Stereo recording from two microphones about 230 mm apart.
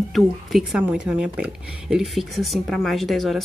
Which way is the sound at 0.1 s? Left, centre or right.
Centre.